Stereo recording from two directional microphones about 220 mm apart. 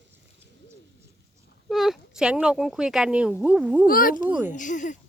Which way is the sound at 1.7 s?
Centre (ahead or behind).